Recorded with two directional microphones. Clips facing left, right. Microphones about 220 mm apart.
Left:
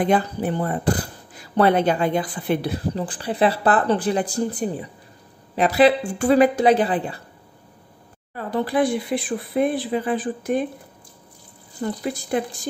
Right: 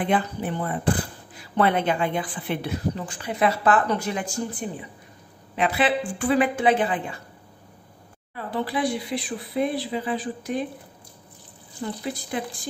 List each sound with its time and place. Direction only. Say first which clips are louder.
0.0 s speech: left 4 dB; 40° left (ahead or behind)
8.4 s speech: left 5 dB; 45° left (ahead or behind)
11.8 s speech: left 4 dB; 45° left (ahead or behind)